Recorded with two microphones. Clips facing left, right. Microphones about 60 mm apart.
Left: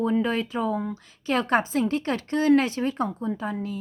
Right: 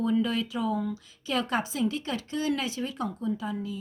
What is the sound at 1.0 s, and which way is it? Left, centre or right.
Speech, left.